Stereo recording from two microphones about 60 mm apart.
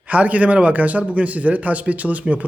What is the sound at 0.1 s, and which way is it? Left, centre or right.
A man's voice, right.